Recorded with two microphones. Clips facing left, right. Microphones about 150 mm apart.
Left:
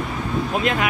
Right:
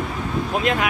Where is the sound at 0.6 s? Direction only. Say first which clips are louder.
Right 1 dB; centre (ahead or behind).